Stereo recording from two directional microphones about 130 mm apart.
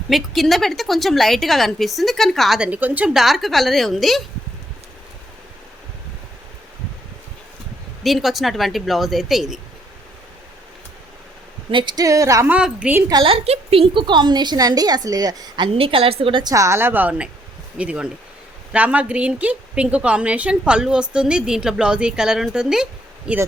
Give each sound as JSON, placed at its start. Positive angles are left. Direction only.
{"t": 0.1, "sound": "a woman's voice", "side_deg": 0}
{"t": 2.6, "sound": "a woman's voice", "side_deg": -10}
{"t": 8.0, "sound": "a woman's voice", "side_deg": 0}
{"t": 11.7, "sound": "a woman's voice", "side_deg": -35}
{"t": 12.5, "sound": "a woman's voice", "side_deg": -10}
{"t": 13.1, "sound": "a woman's voice", "side_deg": -30}
{"t": 13.3, "sound": "a woman's voice", "side_deg": -50}
{"t": 16.4, "sound": "a woman's voice", "side_deg": -25}